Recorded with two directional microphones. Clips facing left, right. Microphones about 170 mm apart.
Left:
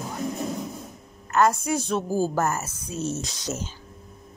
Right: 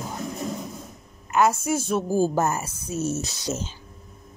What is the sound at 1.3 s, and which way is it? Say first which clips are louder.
Speech: even; 5° right (ahead or behind).